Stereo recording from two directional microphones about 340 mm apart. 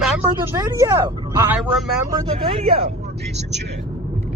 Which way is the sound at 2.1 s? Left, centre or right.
Centre.